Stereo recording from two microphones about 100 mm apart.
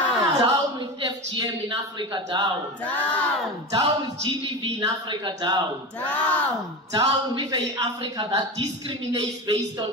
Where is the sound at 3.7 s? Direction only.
55° right (ahead or behind).